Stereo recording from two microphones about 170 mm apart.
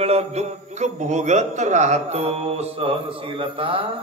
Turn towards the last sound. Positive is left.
turn(degrees=-30)  # may be behind; listen again after turning